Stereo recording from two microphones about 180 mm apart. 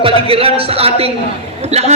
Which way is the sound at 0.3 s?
30° right (ahead or behind).